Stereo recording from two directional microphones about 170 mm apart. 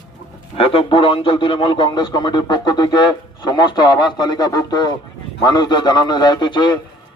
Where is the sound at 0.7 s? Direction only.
30° left (ahead or behind).